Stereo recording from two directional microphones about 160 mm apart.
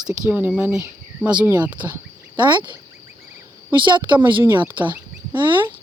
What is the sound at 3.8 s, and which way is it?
Speech, 30° right (ahead or behind).